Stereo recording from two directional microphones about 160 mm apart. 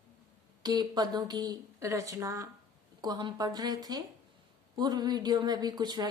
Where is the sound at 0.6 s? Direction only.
25° right (ahead or behind).